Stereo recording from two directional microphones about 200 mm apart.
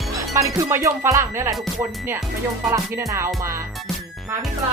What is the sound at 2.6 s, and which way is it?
Speech, 15° right (ahead or behind).